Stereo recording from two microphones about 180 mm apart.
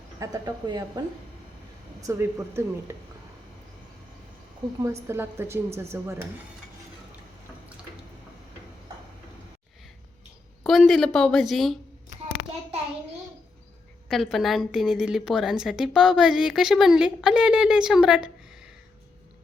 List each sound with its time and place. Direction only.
0.2 s a woman's voice: 20° right (ahead or behind)
4.8 s a woman's voice: 15° right (ahead or behind)
10.6 s a woman's voice: centre (ahead or behind)
14.1 s a woman's voice: centre (ahead or behind)